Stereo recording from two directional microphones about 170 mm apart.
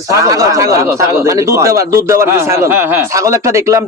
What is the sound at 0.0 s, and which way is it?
Speech, 20° right (ahead or behind).